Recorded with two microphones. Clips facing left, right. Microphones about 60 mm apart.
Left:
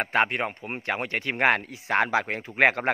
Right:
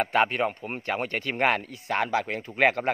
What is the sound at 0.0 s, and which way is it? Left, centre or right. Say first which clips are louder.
Speech: right 1 dB; left.